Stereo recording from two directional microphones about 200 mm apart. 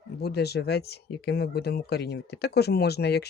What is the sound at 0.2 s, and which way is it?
Speech, 55° left (ahead or behind).